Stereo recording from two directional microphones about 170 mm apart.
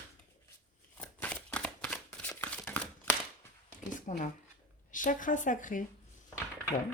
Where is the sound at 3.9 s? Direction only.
50° left (ahead or behind).